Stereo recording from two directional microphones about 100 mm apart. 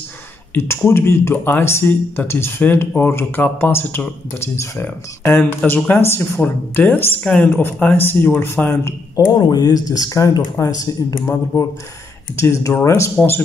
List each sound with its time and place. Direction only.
0.6 s speech: 25° left (ahead or behind)
7.2 s speech: 10° left (ahead or behind)
7.6 s speech: 20° left (ahead or behind)
9.1 s speech: 40° left (ahead or behind)
12.4 s speech: 30° left (ahead or behind)